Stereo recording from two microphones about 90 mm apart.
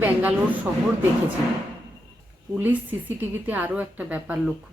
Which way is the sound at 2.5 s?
20° right (ahead or behind).